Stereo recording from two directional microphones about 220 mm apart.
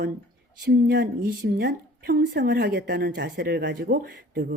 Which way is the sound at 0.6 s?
45° right (ahead or behind).